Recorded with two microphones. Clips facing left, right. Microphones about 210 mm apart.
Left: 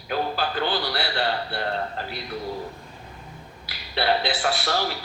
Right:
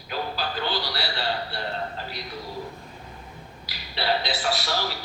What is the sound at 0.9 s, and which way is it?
Speech, 55° left (ahead or behind).